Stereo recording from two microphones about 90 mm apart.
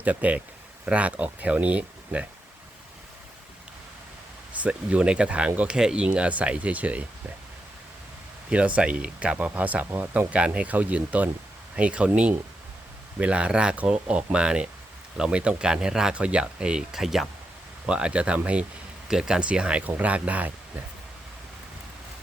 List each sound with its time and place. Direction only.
0.0 s speech: 15° right (ahead or behind)
4.6 s speech: 15° right (ahead or behind)
8.4 s speech: 15° right (ahead or behind)